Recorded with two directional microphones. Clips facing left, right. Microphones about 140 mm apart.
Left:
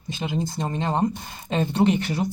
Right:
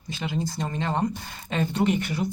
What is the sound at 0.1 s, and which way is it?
Speech, 20° left (ahead or behind).